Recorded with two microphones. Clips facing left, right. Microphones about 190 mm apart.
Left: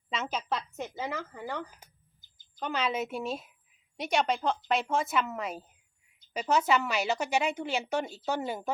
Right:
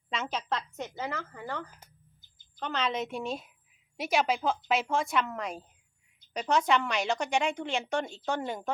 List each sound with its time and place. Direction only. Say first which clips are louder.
0.1 s a woman's voice: even; centre (ahead or behind)